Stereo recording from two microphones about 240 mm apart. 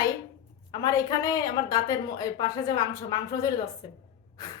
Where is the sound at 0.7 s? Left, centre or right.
Centre.